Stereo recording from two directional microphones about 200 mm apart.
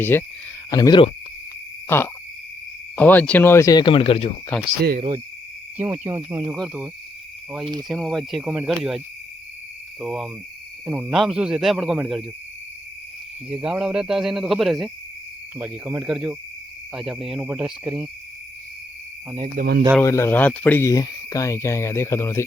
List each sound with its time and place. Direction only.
0.0 s speech: 10° left (ahead or behind)
1.9 s speech: 10° left (ahead or behind); by 4.3 s 25° left (ahead or behind)
4.5 s speech: 5° left (ahead or behind)
4.9 s speech: 25° right (ahead or behind)
5.7 s speech: 10° right (ahead or behind)
7.6 s speech: 20° right (ahead or behind)
7.9 s speech: centre (ahead or behind)
10.0 s speech: 5° right (ahead or behind)
10.8 s speech: 15° right (ahead or behind)
11.1 s speech: 5° right (ahead or behind)
13.6 s speech: 5° right (ahead or behind)
19.5 s speech: 50° right (ahead or behind)
20.0 s speech: 15° left (ahead or behind)